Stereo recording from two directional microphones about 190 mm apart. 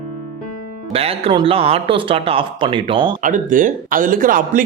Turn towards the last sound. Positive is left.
turn(degrees=-45)  # may be behind; listen again after turning